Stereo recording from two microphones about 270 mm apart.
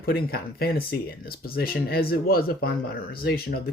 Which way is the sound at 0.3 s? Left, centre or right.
Left.